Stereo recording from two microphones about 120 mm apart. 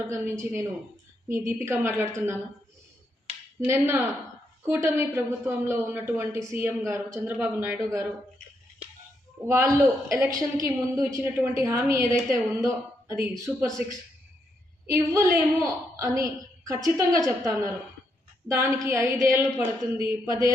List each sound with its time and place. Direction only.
0.1 s a woman's voice: 25° right (ahead or behind)
3.7 s a woman's voice: 20° right (ahead or behind)
9.5 s a woman's voice: 25° right (ahead or behind)